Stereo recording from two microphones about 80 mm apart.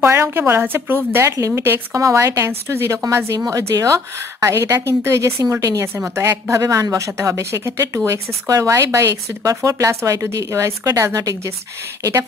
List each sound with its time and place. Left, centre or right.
0.1 s a woman's voice: right